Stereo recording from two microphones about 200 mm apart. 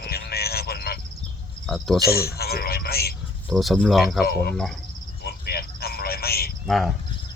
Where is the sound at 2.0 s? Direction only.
50° left (ahead or behind).